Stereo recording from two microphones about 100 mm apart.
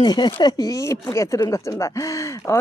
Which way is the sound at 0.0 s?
45° left (ahead or behind).